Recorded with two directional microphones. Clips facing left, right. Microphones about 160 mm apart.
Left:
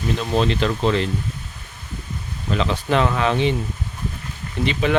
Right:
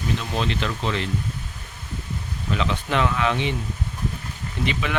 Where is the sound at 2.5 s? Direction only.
35° left (ahead or behind).